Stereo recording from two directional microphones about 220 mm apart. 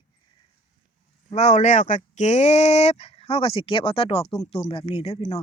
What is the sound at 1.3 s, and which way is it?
Speech, 30° left (ahead or behind).